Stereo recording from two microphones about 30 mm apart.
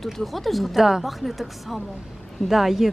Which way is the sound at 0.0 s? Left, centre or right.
Centre.